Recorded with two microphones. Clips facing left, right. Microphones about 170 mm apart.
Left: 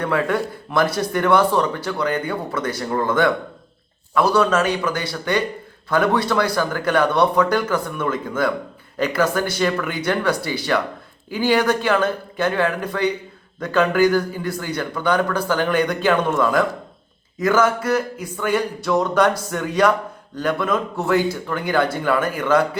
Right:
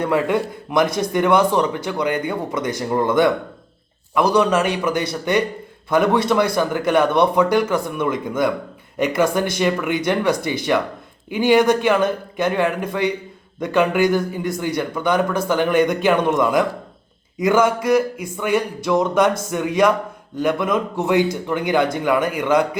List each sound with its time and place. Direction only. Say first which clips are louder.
0.0 s a man's voice: right 2 dB; 15° right (ahead or behind)